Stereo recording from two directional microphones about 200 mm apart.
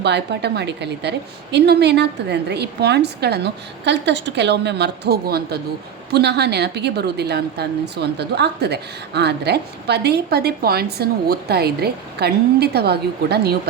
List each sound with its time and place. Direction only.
0.0 s a woman's voice: 60° right (ahead or behind)